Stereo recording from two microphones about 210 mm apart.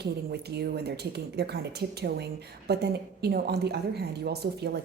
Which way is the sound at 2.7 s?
50° right (ahead or behind).